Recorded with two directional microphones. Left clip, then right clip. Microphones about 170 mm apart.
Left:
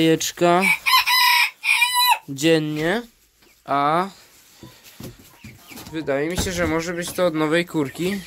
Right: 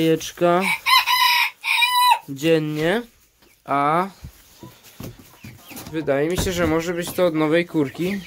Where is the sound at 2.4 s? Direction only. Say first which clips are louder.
Even; 5° left (ahead or behind).